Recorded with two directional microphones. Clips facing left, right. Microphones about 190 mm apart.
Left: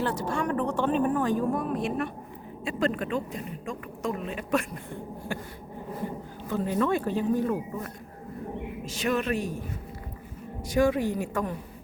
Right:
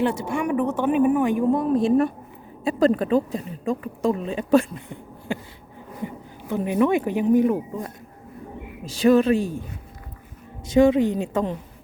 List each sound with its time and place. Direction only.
0.0 s a woman's voice: 10° right (ahead or behind)
1.5 s a woman's voice: 30° right (ahead or behind)
5.3 s a woman's voice: 20° right (ahead or behind)
8.9 s a woman's voice: 35° right (ahead or behind)
10.7 s a woman's voice: 20° right (ahead or behind)